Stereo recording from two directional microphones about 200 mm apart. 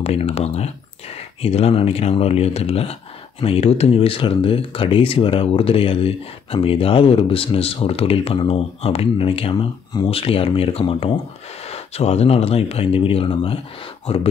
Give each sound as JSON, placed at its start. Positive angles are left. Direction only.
{"t": 0.0, "sound": "speech", "side_deg": 30}